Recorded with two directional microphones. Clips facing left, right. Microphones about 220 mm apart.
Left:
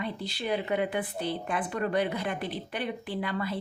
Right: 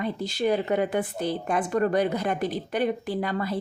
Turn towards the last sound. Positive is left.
turn(degrees=-40)  # may be behind; listen again after turning